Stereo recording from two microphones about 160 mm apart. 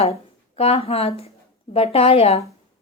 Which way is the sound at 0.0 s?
40° left (ahead or behind).